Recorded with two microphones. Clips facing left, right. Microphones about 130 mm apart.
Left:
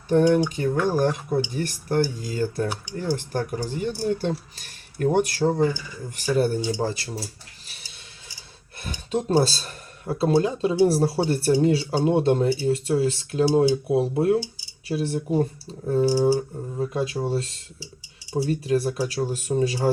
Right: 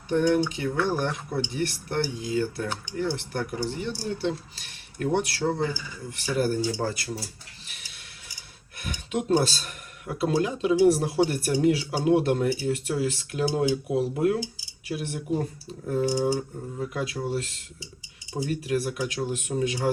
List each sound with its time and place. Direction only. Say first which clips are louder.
0.1 s speech: left 4 dB; 45° left (ahead or behind); by 7.1 s 25° left (ahead or behind)
7.7 s a sound: left 1 dB; 30° left (ahead or behind)
8.8 s speech: left 3 dB; 30° left (ahead or behind)